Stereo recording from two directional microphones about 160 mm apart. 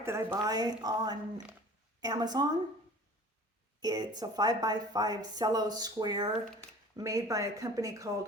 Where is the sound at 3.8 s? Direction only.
25° right (ahead or behind).